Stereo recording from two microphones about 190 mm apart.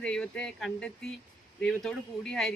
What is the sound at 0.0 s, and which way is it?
A woman's voice, 5° left (ahead or behind).